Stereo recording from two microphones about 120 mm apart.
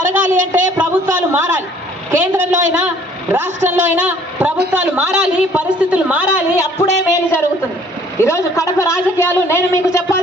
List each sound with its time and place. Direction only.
0.1 s a man's voice: 15° right (ahead or behind)
7.1 s a man's voice: 20° left (ahead or behind)